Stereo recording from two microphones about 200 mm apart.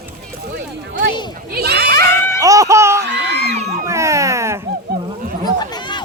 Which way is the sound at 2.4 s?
15° right (ahead or behind).